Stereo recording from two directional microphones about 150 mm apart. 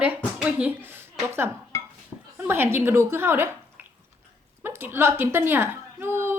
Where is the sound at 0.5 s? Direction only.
10° right (ahead or behind).